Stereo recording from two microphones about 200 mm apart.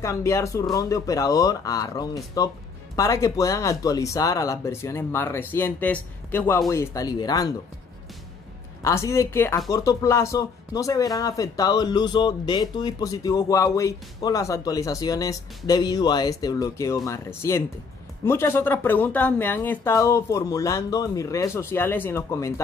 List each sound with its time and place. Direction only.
0.0 s speech: 15° left (ahead or behind)
8.8 s speech: 15° left (ahead or behind)